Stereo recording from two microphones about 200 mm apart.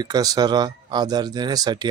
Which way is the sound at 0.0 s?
20° right (ahead or behind).